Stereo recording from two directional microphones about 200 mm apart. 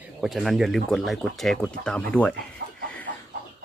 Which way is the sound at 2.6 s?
50° right (ahead or behind).